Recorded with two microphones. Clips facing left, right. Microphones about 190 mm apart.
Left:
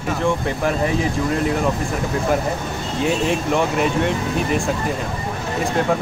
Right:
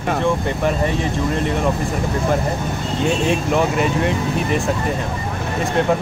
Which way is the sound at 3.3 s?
Centre (ahead or behind).